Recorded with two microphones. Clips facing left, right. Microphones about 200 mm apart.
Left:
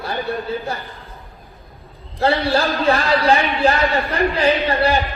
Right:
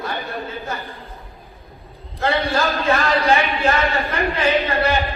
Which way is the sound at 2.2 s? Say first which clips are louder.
Left 3 dB; 40° left (ahead or behind).